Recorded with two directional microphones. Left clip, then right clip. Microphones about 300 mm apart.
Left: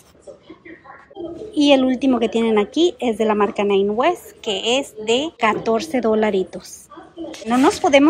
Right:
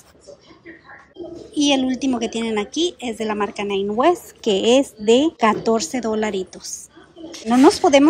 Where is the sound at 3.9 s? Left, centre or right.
Centre.